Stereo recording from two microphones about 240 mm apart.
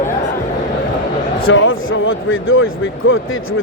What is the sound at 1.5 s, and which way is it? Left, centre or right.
Speech, left.